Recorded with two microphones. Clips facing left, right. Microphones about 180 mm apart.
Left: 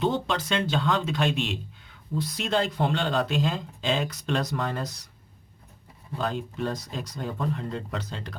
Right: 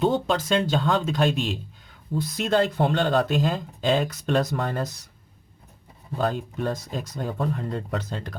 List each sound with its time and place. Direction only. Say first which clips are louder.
0.0 s speech: right 4 dB; 45° right (ahead or behind)
6.1 s speech: right 3 dB; 50° right (ahead or behind)